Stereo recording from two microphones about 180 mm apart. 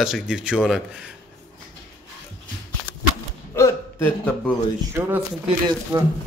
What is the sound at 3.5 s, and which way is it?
Hiccup, 15° left (ahead or behind).